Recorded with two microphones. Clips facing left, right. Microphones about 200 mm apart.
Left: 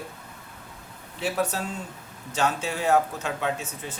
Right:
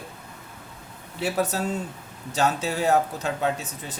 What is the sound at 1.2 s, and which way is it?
Speech, 40° right (ahead or behind).